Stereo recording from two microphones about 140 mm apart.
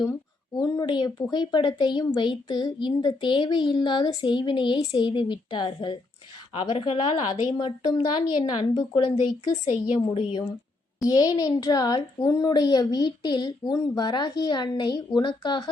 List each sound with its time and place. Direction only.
0.0 s speech: 25° left (ahead or behind)
11.0 s a woman's voice: 30° left (ahead or behind)